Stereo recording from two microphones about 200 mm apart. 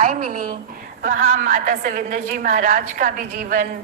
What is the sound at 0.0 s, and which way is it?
A woman's voice, 45° right (ahead or behind).